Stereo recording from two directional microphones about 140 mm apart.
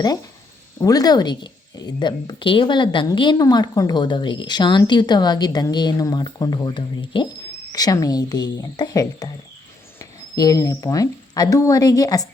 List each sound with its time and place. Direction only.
0.8 s speech: 25° left (ahead or behind)